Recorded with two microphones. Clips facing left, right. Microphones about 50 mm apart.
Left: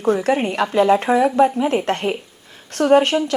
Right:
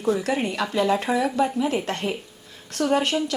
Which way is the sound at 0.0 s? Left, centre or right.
Left.